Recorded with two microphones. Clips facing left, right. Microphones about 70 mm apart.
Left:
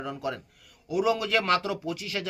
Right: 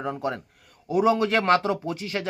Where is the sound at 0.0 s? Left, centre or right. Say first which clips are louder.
Right 4 dB; right.